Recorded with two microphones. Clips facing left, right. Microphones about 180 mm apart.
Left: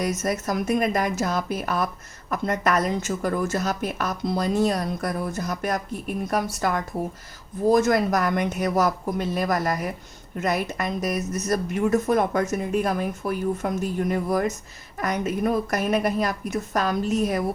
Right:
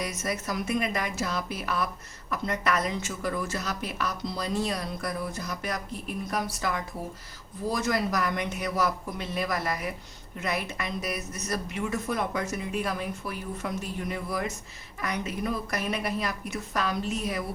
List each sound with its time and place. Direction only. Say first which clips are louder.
0.0 s a woman's voice: left 7 dB; 45° left (ahead or behind)